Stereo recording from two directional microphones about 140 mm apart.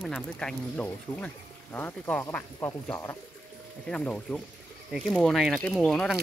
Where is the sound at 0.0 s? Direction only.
5° left (ahead or behind).